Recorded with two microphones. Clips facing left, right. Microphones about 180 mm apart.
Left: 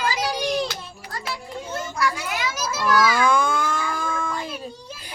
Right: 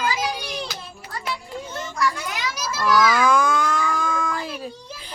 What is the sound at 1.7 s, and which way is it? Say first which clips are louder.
Children playing: left 1 dB; 10° left (ahead or behind).